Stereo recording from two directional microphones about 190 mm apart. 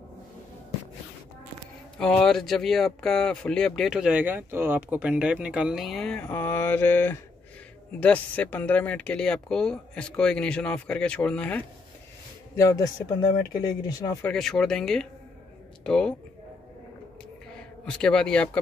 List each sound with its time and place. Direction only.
2.0 s speech: 5° left (ahead or behind)
14.2 s speech: 5° left (ahead or behind)
17.6 s a man's voice: 5° left (ahead or behind)